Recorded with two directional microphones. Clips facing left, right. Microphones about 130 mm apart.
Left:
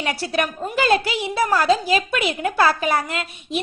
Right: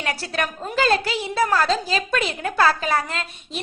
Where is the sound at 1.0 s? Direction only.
35° right (ahead or behind).